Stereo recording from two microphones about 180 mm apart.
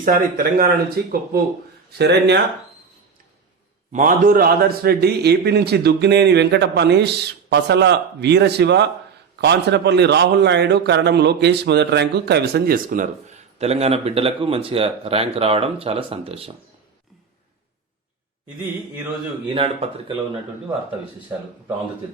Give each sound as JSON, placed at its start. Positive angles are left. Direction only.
{"t": 0.0, "sound": "speech", "side_deg": -50}
{"t": 1.0, "sound": "a man's voice", "side_deg": -60}
{"t": 3.9, "sound": "a man's voice", "side_deg": -50}
{"t": 13.6, "sound": "speech", "side_deg": -35}
{"t": 19.5, "sound": "speech", "side_deg": -30}